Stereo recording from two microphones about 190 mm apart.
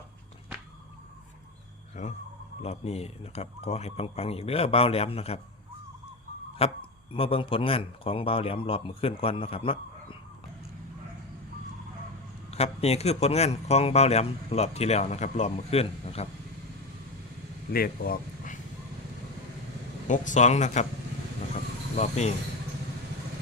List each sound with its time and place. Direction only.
2.0 s a sound: 40° left (ahead or behind)
2.6 s speech: 35° left (ahead or behind)
6.6 s a man's voice: 30° left (ahead or behind)
12.5 s speech: 35° left (ahead or behind)
17.7 s speech: 50° left (ahead or behind)
20.1 s speech: 40° left (ahead or behind)
21.9 s speech: 35° left (ahead or behind)